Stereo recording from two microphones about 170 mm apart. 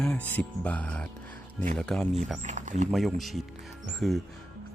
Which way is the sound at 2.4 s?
45° right (ahead or behind).